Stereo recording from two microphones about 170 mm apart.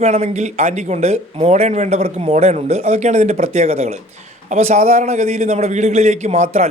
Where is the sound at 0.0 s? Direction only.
40° right (ahead or behind).